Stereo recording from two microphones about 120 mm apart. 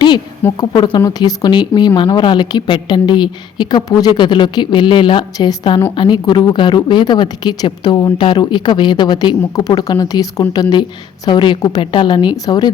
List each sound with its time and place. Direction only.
0.5 s a woman's voice: 35° left (ahead or behind)